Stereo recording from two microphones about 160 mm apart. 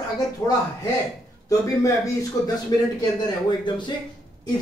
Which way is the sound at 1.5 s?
20° left (ahead or behind).